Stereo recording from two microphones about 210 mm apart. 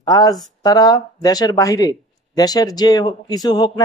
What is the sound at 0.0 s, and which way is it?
Speech, 15° left (ahead or behind).